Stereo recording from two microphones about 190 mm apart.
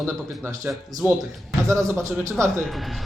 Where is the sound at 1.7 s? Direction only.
15° right (ahead or behind).